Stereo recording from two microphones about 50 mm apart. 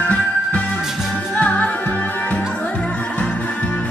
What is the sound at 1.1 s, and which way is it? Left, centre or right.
Music, left.